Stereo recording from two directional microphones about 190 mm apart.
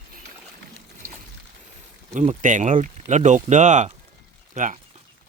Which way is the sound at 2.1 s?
40° right (ahead or behind).